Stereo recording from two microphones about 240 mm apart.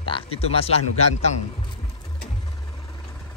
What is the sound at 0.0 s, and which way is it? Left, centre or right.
Speech, left.